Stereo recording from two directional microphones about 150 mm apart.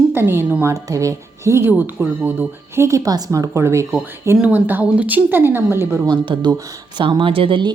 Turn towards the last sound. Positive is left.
turn(degrees=-35)  # may be behind; listen again after turning